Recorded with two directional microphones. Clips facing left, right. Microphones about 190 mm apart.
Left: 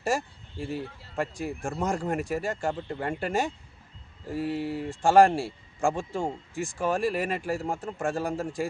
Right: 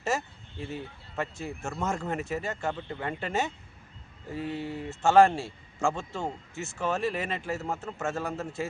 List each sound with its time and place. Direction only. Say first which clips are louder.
0.0 s speech: left 2 dB; 10° left (ahead or behind)
2.7 s speech: left 3 dB; 35° left (ahead or behind)
3.2 s speech: left 2 dB; 10° left (ahead or behind)